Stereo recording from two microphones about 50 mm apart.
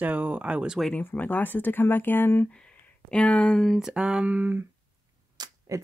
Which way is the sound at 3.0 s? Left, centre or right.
Left.